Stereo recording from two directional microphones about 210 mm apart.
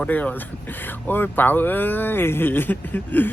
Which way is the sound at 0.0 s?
5° left (ahead or behind).